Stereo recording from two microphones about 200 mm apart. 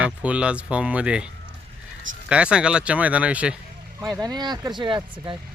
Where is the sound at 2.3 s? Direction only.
5° right (ahead or behind).